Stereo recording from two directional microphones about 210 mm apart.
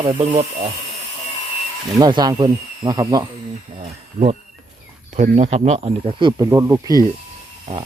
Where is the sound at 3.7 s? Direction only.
30° right (ahead or behind).